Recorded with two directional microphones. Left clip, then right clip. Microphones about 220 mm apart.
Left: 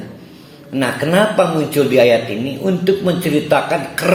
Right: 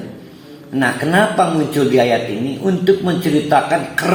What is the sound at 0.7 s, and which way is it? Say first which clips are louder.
Speech: even; 40° left (ahead or behind).